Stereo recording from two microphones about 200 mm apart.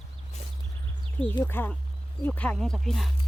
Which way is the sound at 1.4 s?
10° left (ahead or behind).